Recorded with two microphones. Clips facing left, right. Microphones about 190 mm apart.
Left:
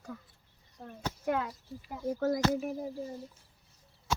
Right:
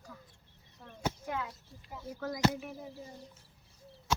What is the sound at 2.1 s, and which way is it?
Speech, 45° left (ahead or behind).